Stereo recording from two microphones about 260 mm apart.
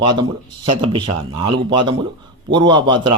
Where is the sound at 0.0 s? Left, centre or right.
Centre.